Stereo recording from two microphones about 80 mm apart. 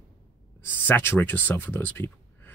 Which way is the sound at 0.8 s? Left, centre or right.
Left.